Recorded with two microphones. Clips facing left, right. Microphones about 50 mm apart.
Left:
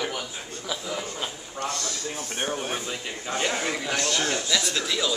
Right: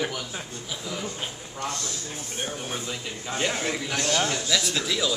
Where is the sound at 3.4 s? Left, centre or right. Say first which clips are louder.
Even; centre.